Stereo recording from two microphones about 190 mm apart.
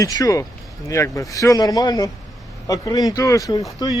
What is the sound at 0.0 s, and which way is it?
A man's voice, 20° left (ahead or behind).